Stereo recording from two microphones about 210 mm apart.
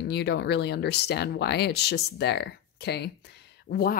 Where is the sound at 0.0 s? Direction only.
55° left (ahead or behind).